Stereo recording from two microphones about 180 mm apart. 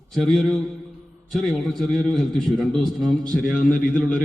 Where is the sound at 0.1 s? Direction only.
Centre (ahead or behind).